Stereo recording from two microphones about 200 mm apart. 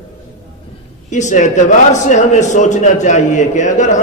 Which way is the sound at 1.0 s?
35° left (ahead or behind).